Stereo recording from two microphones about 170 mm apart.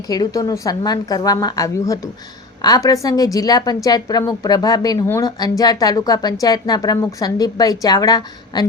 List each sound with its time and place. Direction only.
0.1 s a woman's voice: 20° left (ahead or behind)